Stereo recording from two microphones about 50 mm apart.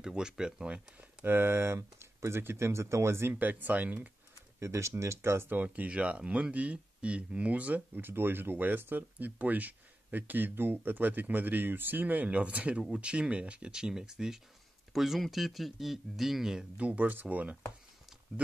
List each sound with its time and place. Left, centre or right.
0.0 s speech: centre
1.2 s speech: right
3.3 s speech: right
4.6 s speech: right
5.5 s speech: right
5.9 s speech: right
8.0 s speech: right; by 16.6 s centre
16.7 s speech: right